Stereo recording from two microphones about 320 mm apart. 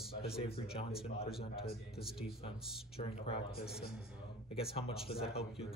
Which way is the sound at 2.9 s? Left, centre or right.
Centre.